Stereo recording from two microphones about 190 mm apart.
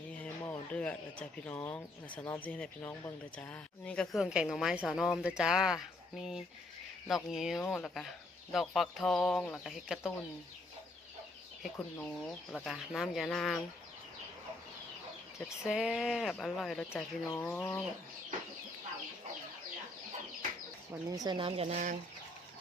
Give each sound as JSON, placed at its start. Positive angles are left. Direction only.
{"t": 0.1, "sound": "a sound", "side_deg": 5}
{"t": 1.5, "sound": "speech", "side_deg": 5}
{"t": 11.8, "sound": "speech", "side_deg": 5}
{"t": 15.6, "sound": "speech", "side_deg": 0}
{"t": 16.9, "sound": "speech", "side_deg": 10}
{"t": 20.9, "sound": "speech", "side_deg": -10}
{"t": 21.2, "sound": "speech", "side_deg": -25}